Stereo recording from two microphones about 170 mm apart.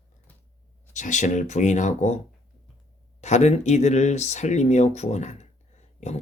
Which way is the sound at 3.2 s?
40° left (ahead or behind).